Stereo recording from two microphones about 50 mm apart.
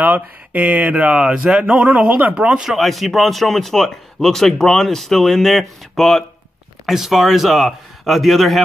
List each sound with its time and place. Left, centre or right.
0.0 s speech: right; by 2.0 s centre
2.0 s speech: right
2.3 s speech: centre
2.7 s speech: centre
6.9 s speech: centre